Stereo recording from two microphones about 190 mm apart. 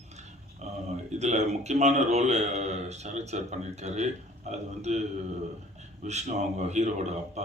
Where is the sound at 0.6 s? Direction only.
40° right (ahead or behind).